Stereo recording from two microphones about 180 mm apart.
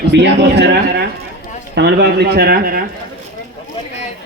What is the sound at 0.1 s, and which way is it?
A man's voice, 75° right (ahead or behind).